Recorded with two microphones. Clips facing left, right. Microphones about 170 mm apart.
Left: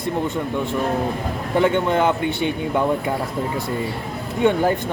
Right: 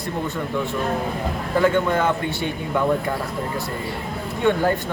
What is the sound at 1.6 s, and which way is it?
Speech, 25° left (ahead or behind).